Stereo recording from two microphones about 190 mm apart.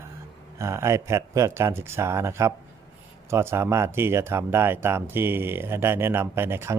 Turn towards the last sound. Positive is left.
turn(degrees=-10)  # may be behind; listen again after turning